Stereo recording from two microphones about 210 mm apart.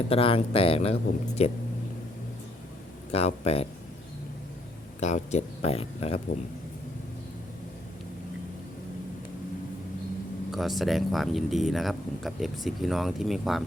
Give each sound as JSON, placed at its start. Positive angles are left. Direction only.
{"t": 0.1, "sound": "speech", "side_deg": 25}
{"t": 3.1, "sound": "speech", "side_deg": 30}
{"t": 4.9, "sound": "speech", "side_deg": 35}
{"t": 10.5, "sound": "speech", "side_deg": 0}